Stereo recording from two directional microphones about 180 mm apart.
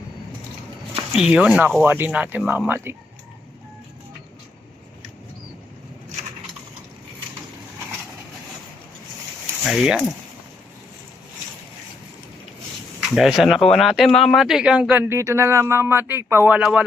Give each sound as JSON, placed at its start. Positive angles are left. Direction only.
{"t": 1.1, "sound": "speech", "side_deg": -5}
{"t": 9.6, "sound": "speech", "side_deg": 0}
{"t": 13.0, "sound": "speech", "side_deg": 0}